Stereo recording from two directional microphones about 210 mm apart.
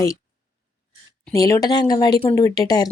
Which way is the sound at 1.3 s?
15° left (ahead or behind).